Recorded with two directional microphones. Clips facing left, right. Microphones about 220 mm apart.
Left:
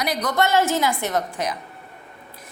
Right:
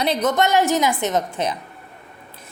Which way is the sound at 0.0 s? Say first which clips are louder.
Right 3 dB; 25° right (ahead or behind).